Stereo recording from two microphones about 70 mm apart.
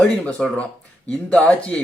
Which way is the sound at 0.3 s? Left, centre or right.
Centre.